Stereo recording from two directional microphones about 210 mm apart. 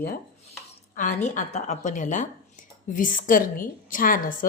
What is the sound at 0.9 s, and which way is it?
A woman's voice, 35° left (ahead or behind).